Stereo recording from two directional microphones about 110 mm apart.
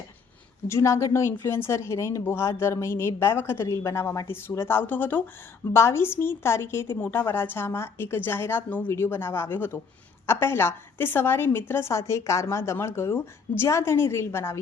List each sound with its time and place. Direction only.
0.7 s a woman's voice: 25° left (ahead or behind)